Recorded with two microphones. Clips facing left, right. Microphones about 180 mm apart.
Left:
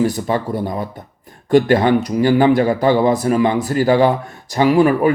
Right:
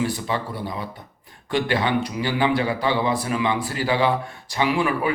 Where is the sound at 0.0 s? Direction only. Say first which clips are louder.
Left 7 dB; 45° left (ahead or behind).